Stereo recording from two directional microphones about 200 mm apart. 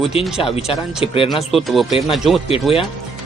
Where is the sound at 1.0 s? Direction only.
30° left (ahead or behind).